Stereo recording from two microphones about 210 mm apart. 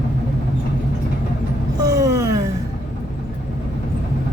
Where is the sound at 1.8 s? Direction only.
15° right (ahead or behind).